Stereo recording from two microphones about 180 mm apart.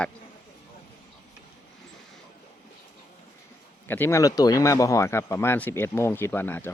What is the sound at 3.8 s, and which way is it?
Speech, 10° left (ahead or behind).